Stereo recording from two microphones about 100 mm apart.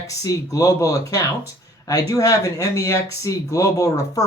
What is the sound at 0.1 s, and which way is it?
Speech, 35° left (ahead or behind).